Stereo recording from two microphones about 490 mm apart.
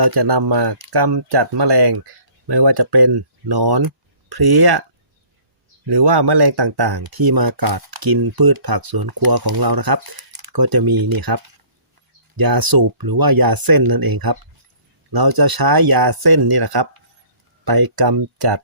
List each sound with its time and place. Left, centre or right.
0.0 s speech: right
5.9 s speech: right